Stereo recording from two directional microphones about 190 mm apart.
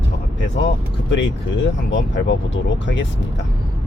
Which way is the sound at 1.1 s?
75° left (ahead or behind).